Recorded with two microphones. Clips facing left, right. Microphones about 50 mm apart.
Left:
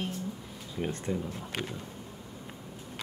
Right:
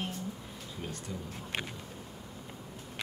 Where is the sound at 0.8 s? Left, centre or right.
Left.